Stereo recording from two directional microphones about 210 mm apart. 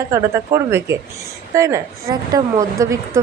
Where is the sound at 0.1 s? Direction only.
15° right (ahead or behind).